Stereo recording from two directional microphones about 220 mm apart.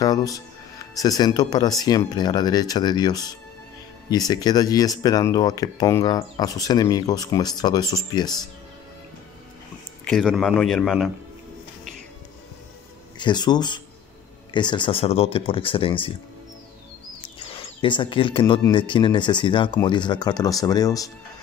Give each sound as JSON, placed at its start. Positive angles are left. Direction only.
{"t": 0.0, "sound": "speech", "side_deg": 15}
{"t": 10.0, "sound": "speech", "side_deg": 0}
{"t": 13.2, "sound": "speech", "side_deg": 20}
{"t": 17.2, "sound": "a sound", "side_deg": 25}
{"t": 18.6, "sound": "speech", "side_deg": 20}